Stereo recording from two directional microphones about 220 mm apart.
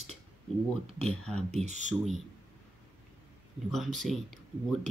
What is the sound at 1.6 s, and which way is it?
Speech, 35° right (ahead or behind).